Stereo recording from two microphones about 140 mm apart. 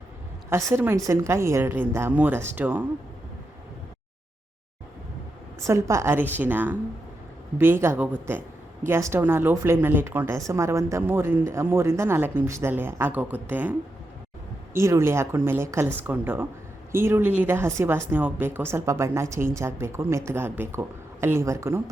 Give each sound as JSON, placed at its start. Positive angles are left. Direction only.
{"t": 0.5, "sound": "a woman's voice", "side_deg": -15}
{"t": 5.6, "sound": "a woman's voice", "side_deg": -20}